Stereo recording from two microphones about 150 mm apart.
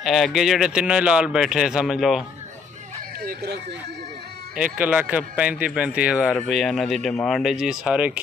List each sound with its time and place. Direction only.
0.0 s speech: centre (ahead or behind)
3.2 s speech: 90° right
4.6 s speech: 10° right (ahead or behind)